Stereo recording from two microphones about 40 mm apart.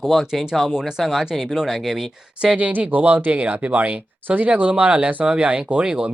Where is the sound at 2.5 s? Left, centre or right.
Right.